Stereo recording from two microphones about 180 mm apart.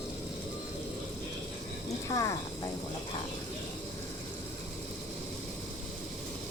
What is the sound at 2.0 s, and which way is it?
Speech, 20° left (ahead or behind).